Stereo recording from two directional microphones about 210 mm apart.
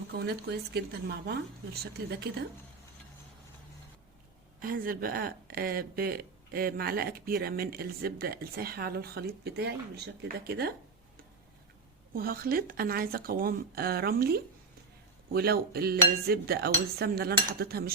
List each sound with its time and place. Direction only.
0.1 s speech: 50° right (ahead or behind)
4.6 s speech: 45° right (ahead or behind)
12.1 s speech: 45° right (ahead or behind)